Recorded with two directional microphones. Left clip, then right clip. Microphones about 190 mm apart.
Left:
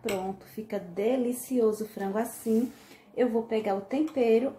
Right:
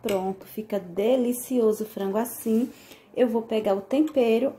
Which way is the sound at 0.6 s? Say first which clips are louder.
Right 5 dB; 30° right (ahead or behind).